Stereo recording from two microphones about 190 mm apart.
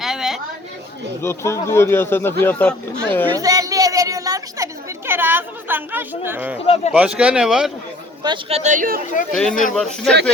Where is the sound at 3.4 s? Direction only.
20° right (ahead or behind).